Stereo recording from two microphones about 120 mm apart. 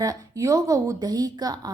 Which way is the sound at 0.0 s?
30° right (ahead or behind).